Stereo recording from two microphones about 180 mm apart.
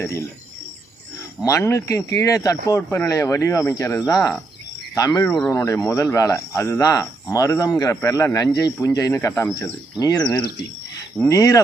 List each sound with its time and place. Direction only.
0.0 s speech: 15° left (ahead or behind)
1.5 s speech: 15° left (ahead or behind)